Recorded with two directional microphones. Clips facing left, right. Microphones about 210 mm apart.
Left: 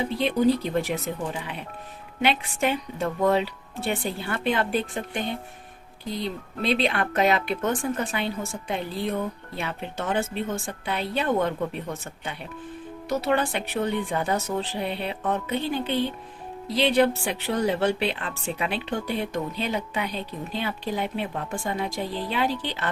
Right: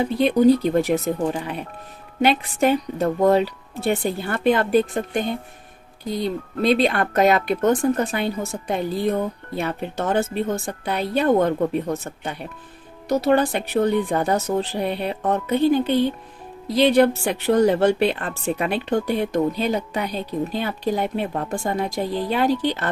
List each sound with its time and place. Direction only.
0.2 s speech: 45° right (ahead or behind)
6.2 s speech: 40° right (ahead or behind)